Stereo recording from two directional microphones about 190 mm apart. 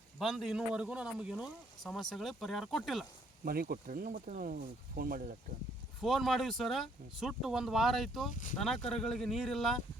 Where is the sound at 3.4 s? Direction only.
50° right (ahead or behind).